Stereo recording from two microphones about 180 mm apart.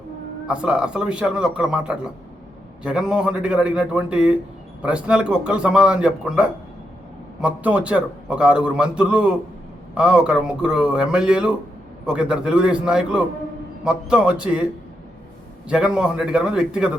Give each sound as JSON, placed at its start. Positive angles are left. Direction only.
{"t": 0.4, "sound": "a man's voice", "side_deg": -5}
{"t": 15.7, "sound": "a man's voice", "side_deg": -5}